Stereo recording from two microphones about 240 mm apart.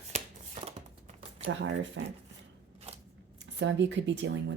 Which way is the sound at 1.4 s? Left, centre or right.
Right.